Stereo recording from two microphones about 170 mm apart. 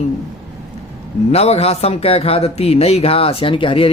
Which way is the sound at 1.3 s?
35° left (ahead or behind).